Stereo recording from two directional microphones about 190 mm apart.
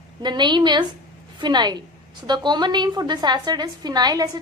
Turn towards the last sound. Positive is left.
turn(degrees=-20)  # may be behind; listen again after turning